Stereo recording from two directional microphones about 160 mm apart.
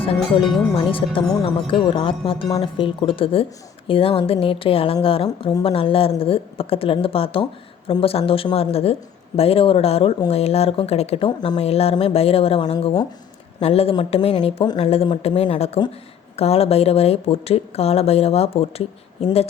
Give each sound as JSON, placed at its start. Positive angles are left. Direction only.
{"t": 0.8, "sound": "speech", "side_deg": 35}